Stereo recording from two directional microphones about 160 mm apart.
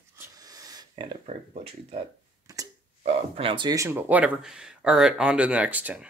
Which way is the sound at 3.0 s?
35° right (ahead or behind).